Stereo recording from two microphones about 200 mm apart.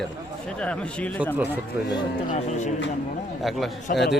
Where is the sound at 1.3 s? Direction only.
10° right (ahead or behind).